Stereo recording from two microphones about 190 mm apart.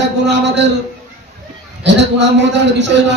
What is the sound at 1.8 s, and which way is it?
A man's voice, 65° right (ahead or behind).